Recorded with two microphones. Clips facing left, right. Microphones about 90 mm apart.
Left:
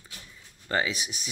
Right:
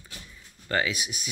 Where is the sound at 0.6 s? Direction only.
30° left (ahead or behind).